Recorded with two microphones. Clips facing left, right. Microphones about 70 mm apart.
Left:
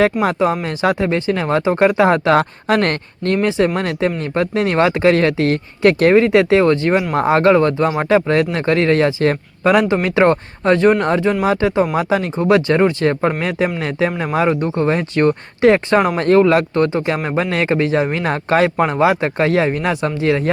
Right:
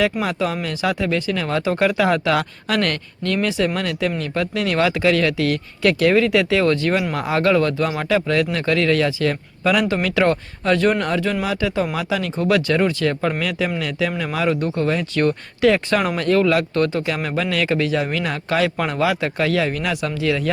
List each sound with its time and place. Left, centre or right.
0.0 s speech: left